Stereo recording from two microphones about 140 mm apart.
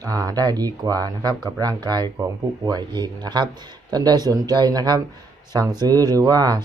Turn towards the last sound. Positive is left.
turn(degrees=-30)  # may be behind; listen again after turning